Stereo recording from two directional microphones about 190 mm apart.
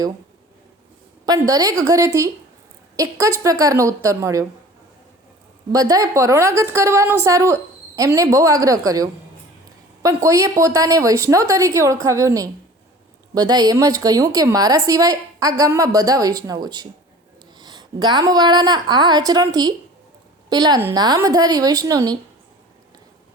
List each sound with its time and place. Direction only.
1.2 s a woman's voice: 20° right (ahead or behind)
5.7 s a woman's voice: 20° right (ahead or behind)